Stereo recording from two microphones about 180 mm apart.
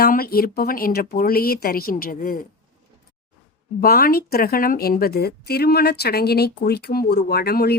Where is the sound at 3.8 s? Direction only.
55° left (ahead or behind).